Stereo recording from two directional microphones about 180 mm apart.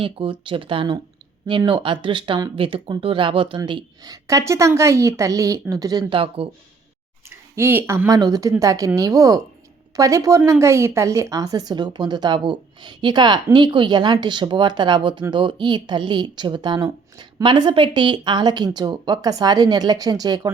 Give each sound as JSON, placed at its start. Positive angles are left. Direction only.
{"t": 0.0, "sound": "a woman's voice", "side_deg": -30}
{"t": 7.3, "sound": "a woman's voice", "side_deg": -15}